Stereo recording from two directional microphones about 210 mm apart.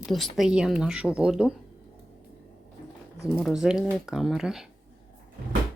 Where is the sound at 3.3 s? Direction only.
Centre (ahead or behind).